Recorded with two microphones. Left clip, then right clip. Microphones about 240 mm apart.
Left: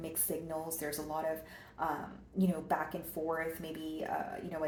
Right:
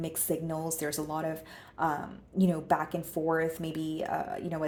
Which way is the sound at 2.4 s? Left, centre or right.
Right.